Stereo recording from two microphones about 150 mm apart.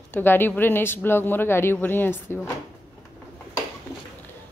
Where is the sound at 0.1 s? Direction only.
15° left (ahead or behind).